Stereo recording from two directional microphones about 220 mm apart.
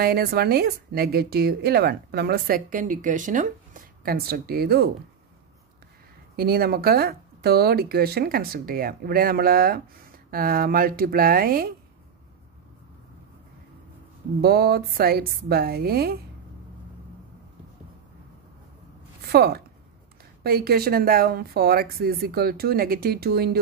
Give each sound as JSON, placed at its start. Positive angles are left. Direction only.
{"t": 0.0, "sound": "a woman's voice", "side_deg": -45}
{"t": 6.3, "sound": "a woman's voice", "side_deg": -45}
{"t": 14.4, "sound": "a woman's voice", "side_deg": -45}
{"t": 19.2, "sound": "a woman's voice", "side_deg": -45}